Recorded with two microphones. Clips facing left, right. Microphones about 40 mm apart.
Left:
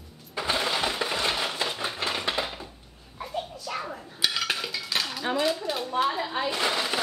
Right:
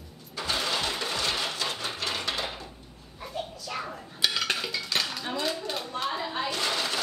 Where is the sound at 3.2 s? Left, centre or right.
Centre.